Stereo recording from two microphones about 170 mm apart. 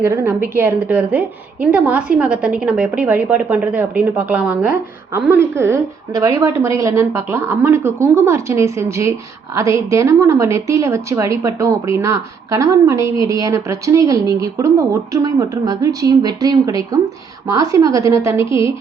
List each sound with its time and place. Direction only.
0.0 s a woman's voice: 15° right (ahead or behind)